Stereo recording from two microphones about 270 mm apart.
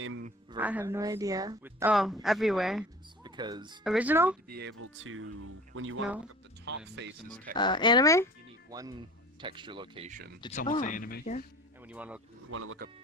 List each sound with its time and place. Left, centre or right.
0.0 s a sound: right
0.5 s speech: centre
3.2 s speech: centre
3.8 s speech: centre
4.4 s speech: right
4.7 s speech: right
7.5 s speech: centre
8.7 s speech: centre; by 10.3 s right
10.8 s speech: left
11.9 s speech: centre
12.5 s speech: right